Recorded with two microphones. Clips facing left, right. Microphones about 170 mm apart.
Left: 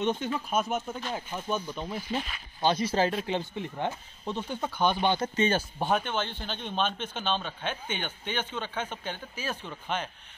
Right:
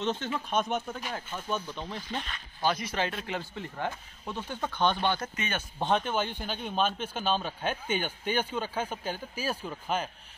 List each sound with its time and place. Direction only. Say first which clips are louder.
0.0 s speech: left 3 dB; 15° left (ahead or behind)
0.5 s speech: right 1 dB; 5° left (ahead or behind)
2.6 s speech: left 4 dB; 25° left (ahead or behind); by 5.1 s 10° left (ahead or behind)
5.1 s speech: left 7 dB; 30° left (ahead or behind)
5.8 s speech: even; 5° left (ahead or behind)
6.1 s speech: right 1 dB; 10° right (ahead or behind)